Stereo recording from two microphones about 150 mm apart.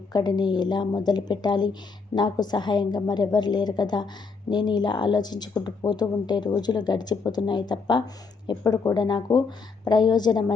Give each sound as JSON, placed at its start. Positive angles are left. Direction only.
{"t": 0.1, "sound": "a woman's voice", "side_deg": 30}